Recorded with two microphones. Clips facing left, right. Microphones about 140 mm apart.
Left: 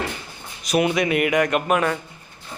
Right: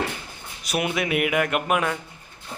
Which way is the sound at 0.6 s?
5° right (ahead or behind).